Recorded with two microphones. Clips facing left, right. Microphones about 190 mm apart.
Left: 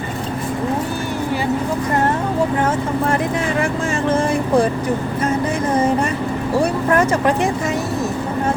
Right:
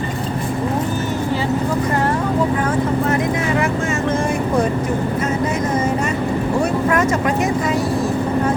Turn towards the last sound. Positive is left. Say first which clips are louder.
# left 1 dB
turn(degrees=30)  # may be behind; listen again after turning